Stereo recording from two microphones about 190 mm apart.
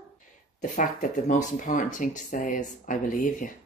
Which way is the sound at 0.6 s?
40° left (ahead or behind).